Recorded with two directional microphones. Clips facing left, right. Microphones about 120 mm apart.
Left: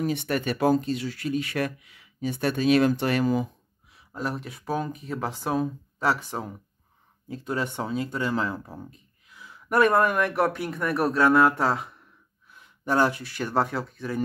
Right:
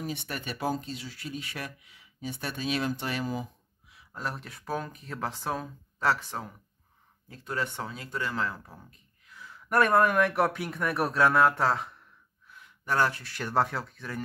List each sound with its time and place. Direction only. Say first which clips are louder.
0.0 s speech: left 9 dB; 65° left (ahead or behind)
4.1 s speech: left 5 dB; 10° left (ahead or behind)
12.4 s gasp: left 4 dB; 25° left (ahead or behind)
13.2 s speech: left 2 dB; 5° left (ahead or behind)